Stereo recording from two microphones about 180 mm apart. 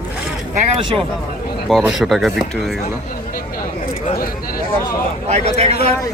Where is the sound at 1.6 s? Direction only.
Centre (ahead or behind).